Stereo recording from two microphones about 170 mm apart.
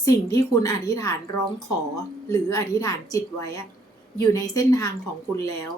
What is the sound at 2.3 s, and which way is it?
A woman's voice, 20° left (ahead or behind).